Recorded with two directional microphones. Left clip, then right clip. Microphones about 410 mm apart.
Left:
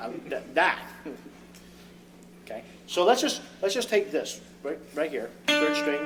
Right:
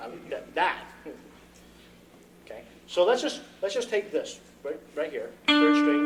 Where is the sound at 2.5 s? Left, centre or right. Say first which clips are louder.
Left 4 dB; centre.